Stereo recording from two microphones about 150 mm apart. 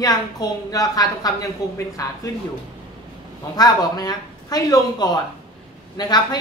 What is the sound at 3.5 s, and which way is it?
A woman's voice, 25° left (ahead or behind).